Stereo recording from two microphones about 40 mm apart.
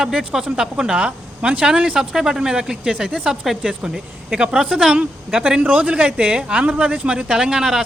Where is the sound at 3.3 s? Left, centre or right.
Centre.